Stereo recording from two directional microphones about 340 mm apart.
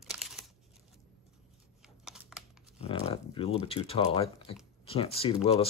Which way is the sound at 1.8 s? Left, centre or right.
Centre.